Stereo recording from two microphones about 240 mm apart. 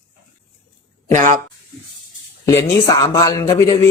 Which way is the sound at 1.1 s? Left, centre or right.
Right.